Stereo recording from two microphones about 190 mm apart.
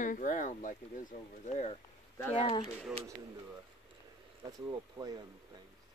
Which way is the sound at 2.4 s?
30° left (ahead or behind).